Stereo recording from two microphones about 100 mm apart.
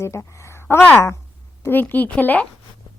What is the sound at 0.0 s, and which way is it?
A woman's voice, 30° left (ahead or behind).